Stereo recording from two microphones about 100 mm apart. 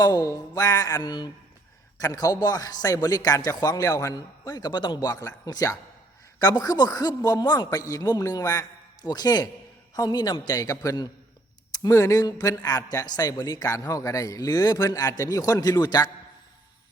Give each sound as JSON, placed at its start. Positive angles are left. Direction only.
{"t": 0.0, "sound": "speech", "side_deg": 40}
{"t": 2.0, "sound": "speech", "side_deg": 35}